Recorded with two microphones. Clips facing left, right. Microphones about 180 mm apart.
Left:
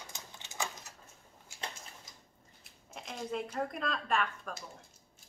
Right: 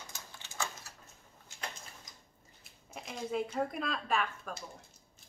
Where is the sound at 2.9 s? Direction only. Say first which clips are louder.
Right 2 dB; centre (ahead or behind).